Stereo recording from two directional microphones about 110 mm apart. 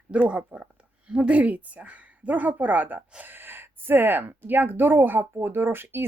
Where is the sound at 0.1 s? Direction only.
10° right (ahead or behind).